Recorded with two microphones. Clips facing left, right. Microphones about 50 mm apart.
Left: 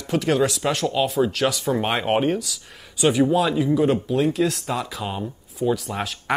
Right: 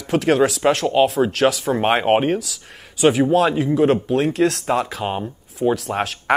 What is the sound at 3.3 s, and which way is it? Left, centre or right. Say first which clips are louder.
Speech: right 3 dB; right.